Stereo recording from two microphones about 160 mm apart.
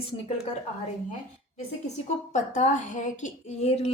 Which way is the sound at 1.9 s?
50° left (ahead or behind).